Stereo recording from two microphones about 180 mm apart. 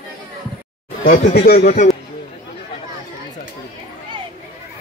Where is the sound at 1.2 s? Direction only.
40° left (ahead or behind).